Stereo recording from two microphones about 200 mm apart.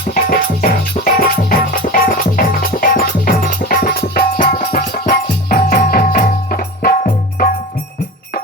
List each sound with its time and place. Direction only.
0.1 s music: 45° left (ahead or behind)